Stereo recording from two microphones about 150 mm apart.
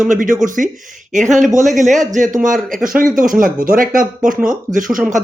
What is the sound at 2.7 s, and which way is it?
Speech, 65° right (ahead or behind).